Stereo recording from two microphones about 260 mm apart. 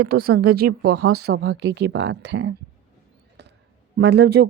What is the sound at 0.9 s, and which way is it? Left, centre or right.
Speech, right.